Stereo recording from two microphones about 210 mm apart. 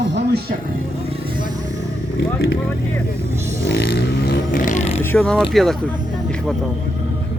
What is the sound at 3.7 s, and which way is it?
Vehicle, 60° left (ahead or behind).